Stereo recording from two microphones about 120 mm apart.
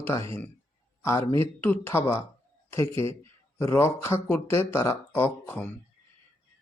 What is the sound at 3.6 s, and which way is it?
Speech, 20° left (ahead or behind).